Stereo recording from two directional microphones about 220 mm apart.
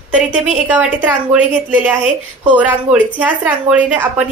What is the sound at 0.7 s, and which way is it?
A woman's voice, 5° right (ahead or behind).